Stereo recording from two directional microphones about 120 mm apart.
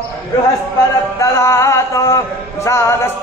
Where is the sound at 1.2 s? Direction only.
25° left (ahead or behind).